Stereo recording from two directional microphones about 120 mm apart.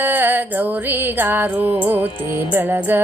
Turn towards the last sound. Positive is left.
turn(degrees=-15)  # may be behind; listen again after turning